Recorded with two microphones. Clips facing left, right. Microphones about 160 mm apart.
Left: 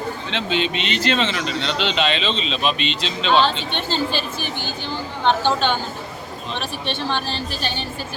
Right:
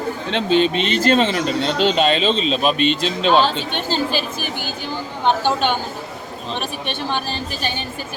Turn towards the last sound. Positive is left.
turn(degrees=-50)  # may be behind; listen again after turning